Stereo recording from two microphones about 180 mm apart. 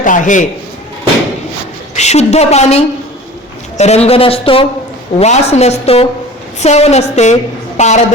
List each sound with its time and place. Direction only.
0.0 s a man's voice: 45° left (ahead or behind)
2.0 s a woman's voice: 40° left (ahead or behind)